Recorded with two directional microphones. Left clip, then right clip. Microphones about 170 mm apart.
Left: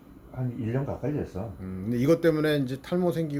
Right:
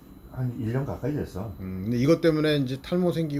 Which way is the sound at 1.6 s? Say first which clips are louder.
Right 1 dB; centre (ahead or behind).